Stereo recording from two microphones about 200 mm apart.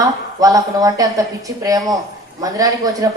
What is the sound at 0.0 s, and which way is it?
A woman's voice, 15° right (ahead or behind).